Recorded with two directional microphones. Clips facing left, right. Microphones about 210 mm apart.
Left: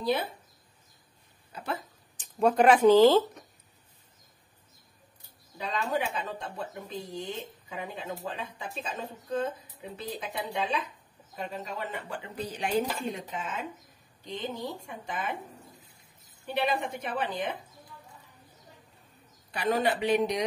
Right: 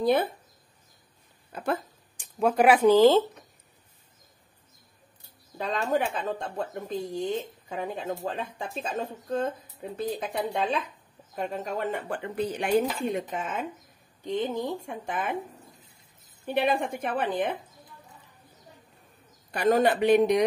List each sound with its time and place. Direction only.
0.0 s speech: 55° right (ahead or behind)
1.5 s speech: 50° right (ahead or behind)
2.3 s speech: 5° right (ahead or behind)
5.6 s speech: 45° right (ahead or behind)
16.4 s speech: 50° right (ahead or behind)
19.5 s speech: 45° right (ahead or behind)